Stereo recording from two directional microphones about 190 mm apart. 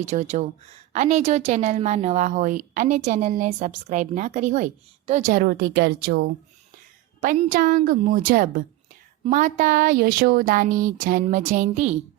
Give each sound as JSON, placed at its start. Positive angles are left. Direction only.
{"t": 0.0, "sound": "a woman's voice", "side_deg": -35}
{"t": 7.5, "sound": "a woman's voice", "side_deg": -45}